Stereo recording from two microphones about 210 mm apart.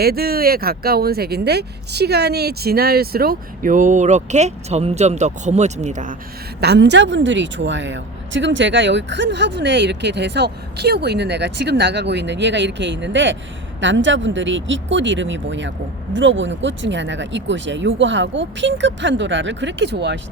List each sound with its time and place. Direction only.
0.0 s speech: 45° right (ahead or behind)
6.6 s a woman's voice: 55° right (ahead or behind)